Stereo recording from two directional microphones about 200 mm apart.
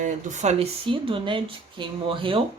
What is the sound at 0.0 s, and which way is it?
Speech, 40° right (ahead or behind).